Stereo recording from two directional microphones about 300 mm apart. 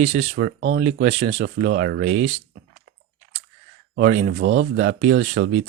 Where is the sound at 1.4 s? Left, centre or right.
Right.